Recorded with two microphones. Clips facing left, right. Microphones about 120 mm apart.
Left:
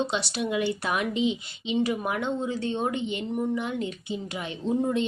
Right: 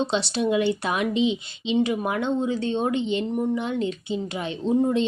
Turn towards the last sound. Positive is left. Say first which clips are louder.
# right 4 dB
turn(degrees=-25)  # may be behind; listen again after turning